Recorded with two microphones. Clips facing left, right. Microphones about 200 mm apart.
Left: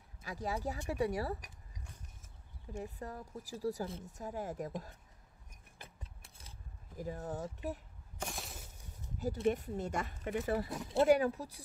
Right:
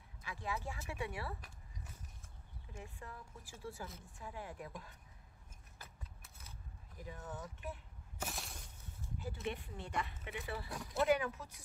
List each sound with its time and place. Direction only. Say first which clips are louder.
0.2 s speech: left 5 dB; 40° left (ahead or behind)
2.7 s speech: left 9 dB; 40° left (ahead or behind)
6.2 s scissors: left 1 dB; 30° left (ahead or behind)
7.0 s speech: left 8 dB; 40° left (ahead or behind)
8.2 s a sound: left 2 dB; centre (ahead or behind)
9.2 s a woman's voice: left 10 dB; 40° left (ahead or behind)
10.7 s speech: left 3 dB; 25° left (ahead or behind)
11.1 s speech: left 6 dB; 35° left (ahead or behind)